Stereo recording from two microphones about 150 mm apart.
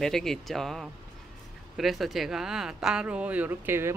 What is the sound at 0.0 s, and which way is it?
Speech, centre (ahead or behind).